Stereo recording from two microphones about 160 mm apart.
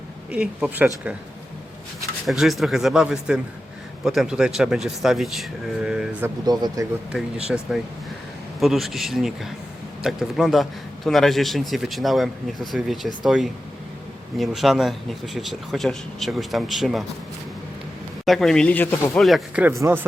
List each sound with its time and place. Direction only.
0.3 s speech: 5° right (ahead or behind)
2.2 s a man's voice: centre (ahead or behind)
6.4 s speech: 25° right (ahead or behind)
7.1 s a man's voice: 5° right (ahead or behind)
18.3 s speech: 5° left (ahead or behind)
19.2 s a man's voice: centre (ahead or behind)
19.6 s speech: 15° right (ahead or behind)